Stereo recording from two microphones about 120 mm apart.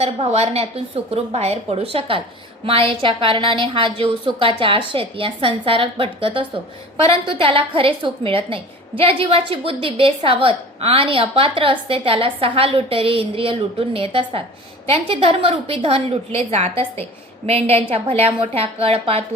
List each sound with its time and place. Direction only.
0.0 s a woman's voice: 60° right (ahead or behind)